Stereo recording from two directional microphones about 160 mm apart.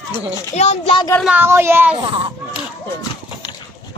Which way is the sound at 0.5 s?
45° left (ahead or behind).